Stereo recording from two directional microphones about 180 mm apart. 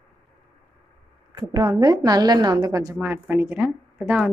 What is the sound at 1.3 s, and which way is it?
A woman's voice, 20° right (ahead or behind).